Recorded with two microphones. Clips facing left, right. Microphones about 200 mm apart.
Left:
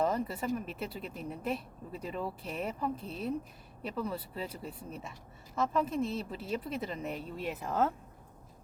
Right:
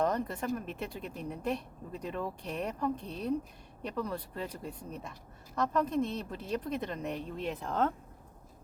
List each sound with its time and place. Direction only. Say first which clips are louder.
0.0 s speech: even; 5° left (ahead or behind)